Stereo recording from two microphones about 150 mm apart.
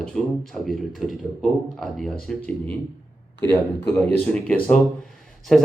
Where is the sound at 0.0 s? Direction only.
5° left (ahead or behind).